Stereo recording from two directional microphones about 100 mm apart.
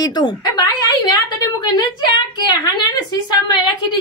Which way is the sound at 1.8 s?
45° left (ahead or behind).